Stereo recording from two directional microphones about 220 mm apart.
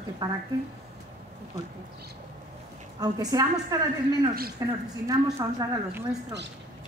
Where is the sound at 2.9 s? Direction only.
15° right (ahead or behind).